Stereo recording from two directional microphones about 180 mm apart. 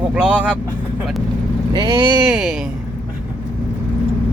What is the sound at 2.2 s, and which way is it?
Speech, 5° right (ahead or behind).